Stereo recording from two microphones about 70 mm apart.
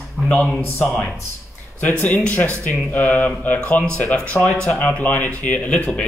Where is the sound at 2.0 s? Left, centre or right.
Left.